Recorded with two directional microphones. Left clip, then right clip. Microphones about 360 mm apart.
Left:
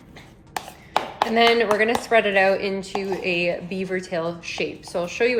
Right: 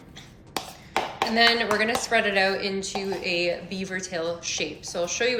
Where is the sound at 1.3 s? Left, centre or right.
Centre.